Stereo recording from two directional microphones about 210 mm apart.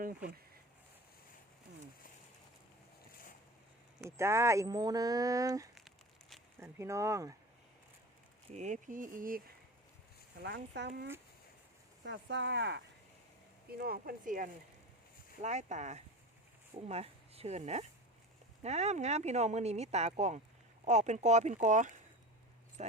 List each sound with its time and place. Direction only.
4.0 s speech: 10° right (ahead or behind)
8.5 s speech: 35° right (ahead or behind)
10.4 s speech: 55° right (ahead or behind); by 22.9 s 35° right (ahead or behind)